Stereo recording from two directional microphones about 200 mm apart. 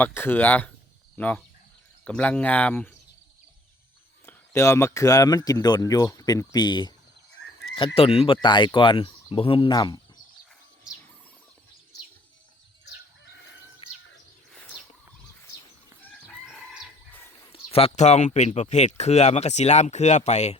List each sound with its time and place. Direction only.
0.0 s speech: 10° left (ahead or behind)
4.3 s speech: 15° left (ahead or behind)
7.9 s speech: 30° left (ahead or behind)
14.5 s a sound: centre (ahead or behind)
16.3 s chicken: 5° left (ahead or behind)
17.5 s speech: 30° left (ahead or behind)